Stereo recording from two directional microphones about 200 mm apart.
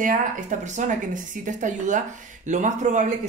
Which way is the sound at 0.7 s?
40° right (ahead or behind).